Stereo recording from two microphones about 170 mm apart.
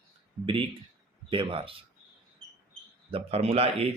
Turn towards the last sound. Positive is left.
turn(degrees=-35)  # may be behind; listen again after turning